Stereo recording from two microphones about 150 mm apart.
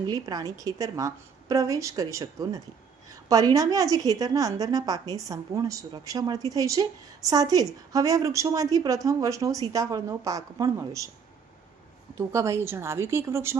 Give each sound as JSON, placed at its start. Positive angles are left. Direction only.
{"t": 0.0, "sound": "a woman's voice", "side_deg": -25}
{"t": 12.1, "sound": "a woman's voice", "side_deg": -20}